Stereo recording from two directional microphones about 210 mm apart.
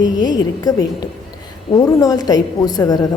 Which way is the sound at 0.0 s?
20° left (ahead or behind).